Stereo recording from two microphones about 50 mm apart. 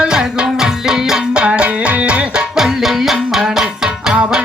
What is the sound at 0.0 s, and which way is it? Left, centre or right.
Music, centre.